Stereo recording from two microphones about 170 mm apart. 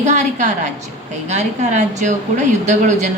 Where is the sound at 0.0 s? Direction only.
45° right (ahead or behind).